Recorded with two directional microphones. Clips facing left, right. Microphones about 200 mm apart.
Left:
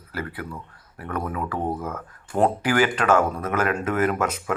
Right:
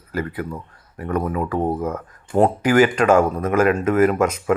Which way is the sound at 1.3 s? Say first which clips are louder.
Right 6 dB; 15° right (ahead or behind).